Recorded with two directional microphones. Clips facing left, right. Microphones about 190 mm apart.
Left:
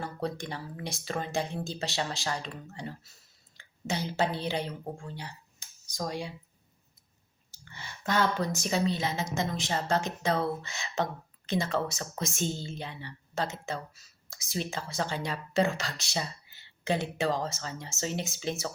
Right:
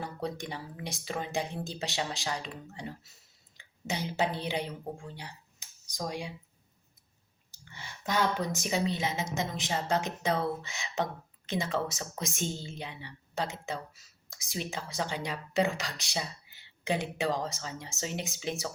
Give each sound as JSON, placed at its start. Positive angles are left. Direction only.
{"t": 0.0, "sound": "a woman's voice", "side_deg": -15}
{"t": 7.5, "sound": "clicking", "side_deg": -15}
{"t": 8.5, "sound": "speech", "side_deg": -15}
{"t": 9.6, "sound": "speech", "side_deg": 0}
{"t": 9.9, "sound": "speech", "side_deg": -15}